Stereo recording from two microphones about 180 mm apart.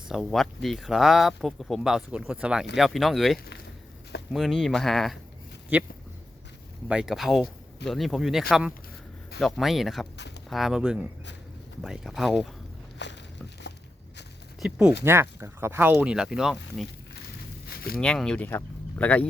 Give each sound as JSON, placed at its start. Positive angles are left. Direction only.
{"t": 0.1, "sound": "speech", "side_deg": 0}
{"t": 13.0, "sound": "walk", "side_deg": 75}
{"t": 14.6, "sound": "speech", "side_deg": -5}
{"t": 18.0, "sound": "speech", "side_deg": 5}